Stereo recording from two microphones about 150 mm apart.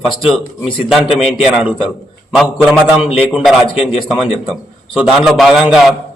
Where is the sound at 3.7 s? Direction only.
40° left (ahead or behind).